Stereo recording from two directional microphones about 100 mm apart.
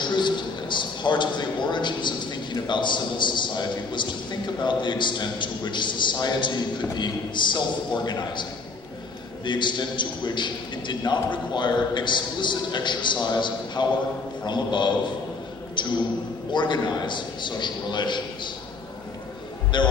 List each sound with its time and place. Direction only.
0.0 s a man's voice: 50° left (ahead or behind)
16.5 s a man's voice: 50° left (ahead or behind)
19.7 s a man's voice: 50° left (ahead or behind)